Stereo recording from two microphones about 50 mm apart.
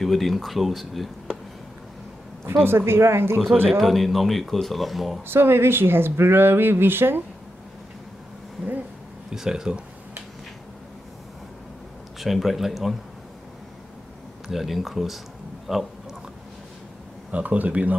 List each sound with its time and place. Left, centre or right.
0.0 s speech: centre
2.6 s speech: right
3.8 s speech: centre
5.3 s speech: right
9.3 s speech: centre
12.2 s speech: centre
14.5 s speech: centre
17.3 s speech: right